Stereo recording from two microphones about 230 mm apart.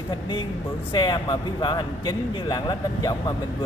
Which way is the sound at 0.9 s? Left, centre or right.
Centre.